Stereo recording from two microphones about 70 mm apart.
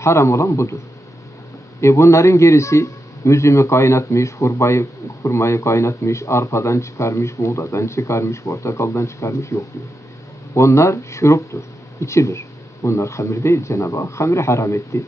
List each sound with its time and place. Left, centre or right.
0.0 s a man's voice: left
1.8 s a man's voice: left